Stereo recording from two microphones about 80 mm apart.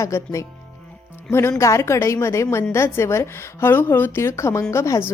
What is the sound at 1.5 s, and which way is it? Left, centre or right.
A woman's voice, left.